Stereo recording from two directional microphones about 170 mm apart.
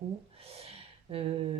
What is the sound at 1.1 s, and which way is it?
Speech, 35° right (ahead or behind).